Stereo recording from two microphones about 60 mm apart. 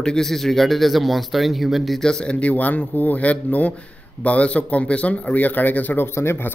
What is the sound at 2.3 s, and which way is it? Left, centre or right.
Speech, left.